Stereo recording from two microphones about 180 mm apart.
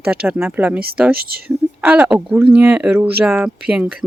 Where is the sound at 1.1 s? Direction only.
55° right (ahead or behind).